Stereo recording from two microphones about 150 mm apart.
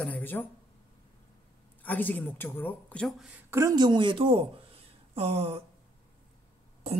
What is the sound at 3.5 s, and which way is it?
Speech, 25° right (ahead or behind).